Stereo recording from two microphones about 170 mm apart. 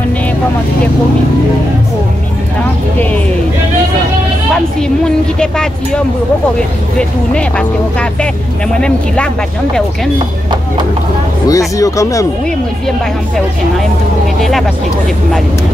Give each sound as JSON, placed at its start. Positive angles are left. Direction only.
{"t": 4.8, "sound": "speech", "side_deg": 5}
{"t": 11.4, "sound": "speech", "side_deg": 20}